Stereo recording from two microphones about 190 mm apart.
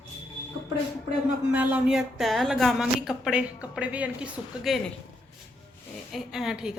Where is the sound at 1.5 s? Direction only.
10° right (ahead or behind).